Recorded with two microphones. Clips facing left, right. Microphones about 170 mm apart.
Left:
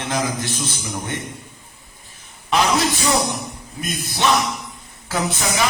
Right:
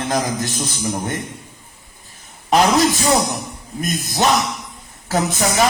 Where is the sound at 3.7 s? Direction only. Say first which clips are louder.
Right 5 dB; 40° right (ahead or behind).